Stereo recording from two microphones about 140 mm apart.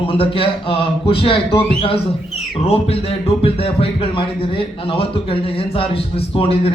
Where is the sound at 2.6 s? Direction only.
45° left (ahead or behind).